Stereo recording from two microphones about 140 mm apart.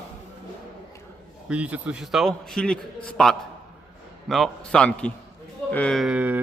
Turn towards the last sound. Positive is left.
turn(degrees=-10)  # may be behind; listen again after turning